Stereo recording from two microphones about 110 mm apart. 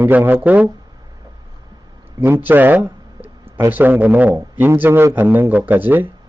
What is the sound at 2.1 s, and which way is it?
Speech, 20° right (ahead or behind).